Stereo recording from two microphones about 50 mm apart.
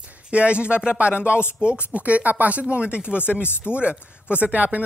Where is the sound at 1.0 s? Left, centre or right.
Left.